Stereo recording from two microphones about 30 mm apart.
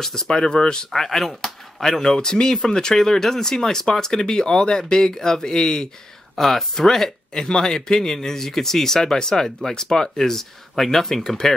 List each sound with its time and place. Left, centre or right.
0.0 s speech: centre
1.0 s speech: centre
2.9 s speech: centre